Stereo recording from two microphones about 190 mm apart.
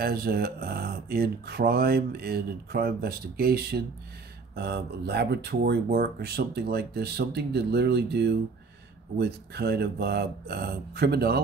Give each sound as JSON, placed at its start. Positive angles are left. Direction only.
{"t": 0.0, "sound": "speech", "side_deg": -55}